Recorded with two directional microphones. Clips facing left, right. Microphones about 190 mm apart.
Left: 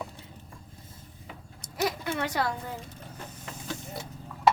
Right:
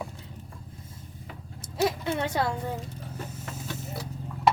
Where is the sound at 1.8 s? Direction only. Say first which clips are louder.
Right 3 dB; 25° right (ahead or behind).